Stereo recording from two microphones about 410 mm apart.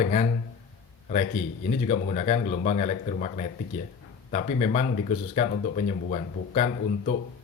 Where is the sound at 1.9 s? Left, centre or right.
Centre.